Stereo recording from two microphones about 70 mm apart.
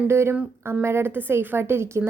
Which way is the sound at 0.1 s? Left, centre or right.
Right.